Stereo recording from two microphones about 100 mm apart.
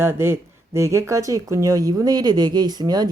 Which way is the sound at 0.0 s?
25° right (ahead or behind).